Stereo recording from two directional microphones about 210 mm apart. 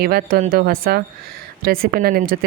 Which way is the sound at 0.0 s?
45° right (ahead or behind).